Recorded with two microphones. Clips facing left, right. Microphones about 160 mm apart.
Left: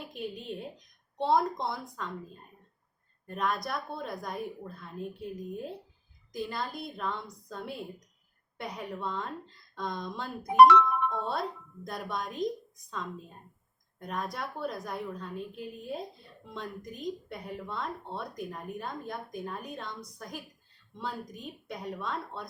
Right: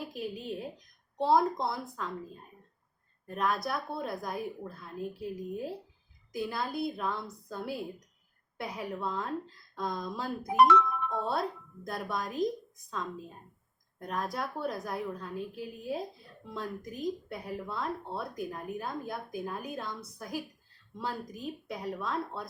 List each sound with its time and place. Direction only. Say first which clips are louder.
0.0 s a woman's voice: right 1 dB; centre (ahead or behind)
10.6 s music: left 5 dB; 70° left (ahead or behind)
11.2 s a woman's voice: right 1 dB; centre (ahead or behind)